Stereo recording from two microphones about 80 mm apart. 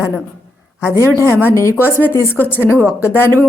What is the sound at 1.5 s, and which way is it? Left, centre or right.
Speech, left.